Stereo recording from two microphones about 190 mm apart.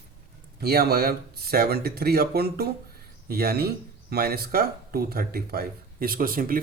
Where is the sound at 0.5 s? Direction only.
55° right (ahead or behind).